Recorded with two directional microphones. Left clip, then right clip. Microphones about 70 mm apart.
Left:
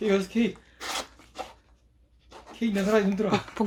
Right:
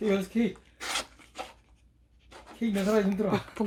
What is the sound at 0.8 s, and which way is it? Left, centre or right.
Dog, left.